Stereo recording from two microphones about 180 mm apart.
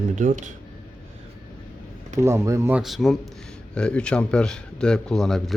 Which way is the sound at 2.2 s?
15° right (ahead or behind).